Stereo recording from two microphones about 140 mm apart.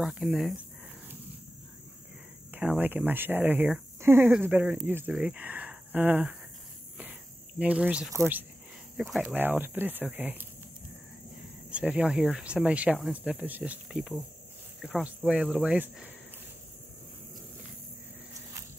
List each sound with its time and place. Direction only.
0.0 s speech: centre (ahead or behind)
2.5 s speech: 10° right (ahead or behind)
7.0 s cricket: 10° right (ahead or behind)
8.9 s speech: centre (ahead or behind)
9.2 s speech: 15° right (ahead or behind)
11.7 s speech: 10° right (ahead or behind)